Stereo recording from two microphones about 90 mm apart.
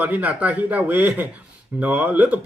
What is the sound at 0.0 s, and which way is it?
Speech, 15° right (ahead or behind).